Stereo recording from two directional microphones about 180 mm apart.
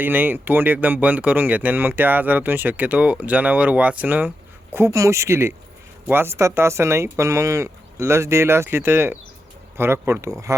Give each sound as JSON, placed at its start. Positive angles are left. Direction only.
{"t": 0.0, "sound": "speech", "side_deg": -10}